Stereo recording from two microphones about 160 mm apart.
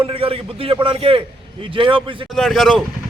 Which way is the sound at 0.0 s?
35° right (ahead or behind).